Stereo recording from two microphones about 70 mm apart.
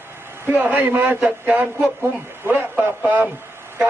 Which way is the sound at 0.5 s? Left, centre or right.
Right.